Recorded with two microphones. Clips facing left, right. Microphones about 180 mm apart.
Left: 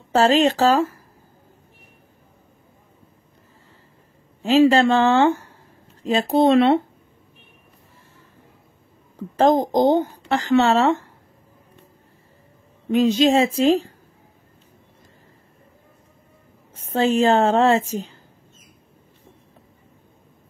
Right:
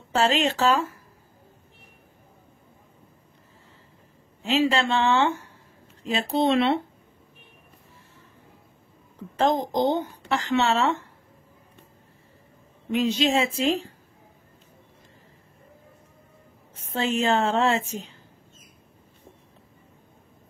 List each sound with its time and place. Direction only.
0.1 s speech: 35° left (ahead or behind)
4.4 s speech: 40° left (ahead or behind)
9.4 s speech: 45° left (ahead or behind)
12.9 s speech: 45° left (ahead or behind)
16.8 s speech: 40° left (ahead or behind)